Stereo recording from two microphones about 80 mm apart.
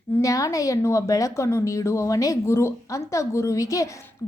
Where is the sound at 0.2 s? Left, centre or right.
Left.